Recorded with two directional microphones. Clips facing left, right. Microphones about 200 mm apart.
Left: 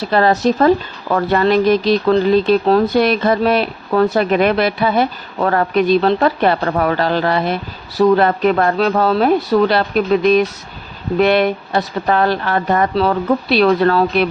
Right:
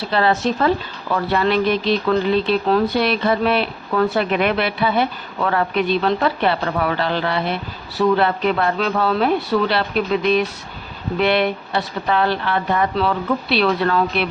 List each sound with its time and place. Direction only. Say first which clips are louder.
0.0 s speech: left 4 dB; 45° left (ahead or behind)